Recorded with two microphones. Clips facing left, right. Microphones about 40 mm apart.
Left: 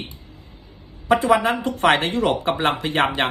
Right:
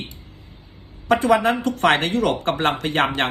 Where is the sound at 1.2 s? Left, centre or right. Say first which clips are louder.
Right 1 dB; left.